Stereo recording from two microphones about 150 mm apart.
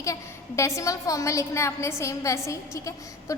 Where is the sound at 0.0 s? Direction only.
20° left (ahead or behind).